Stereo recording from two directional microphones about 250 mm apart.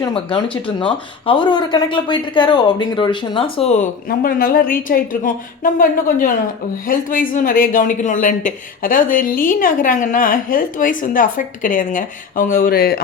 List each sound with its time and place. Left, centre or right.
0.0 s speech: centre; by 13.0 s left